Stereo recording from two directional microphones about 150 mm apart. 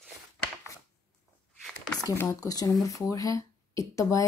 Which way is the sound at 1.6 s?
Centre (ahead or behind).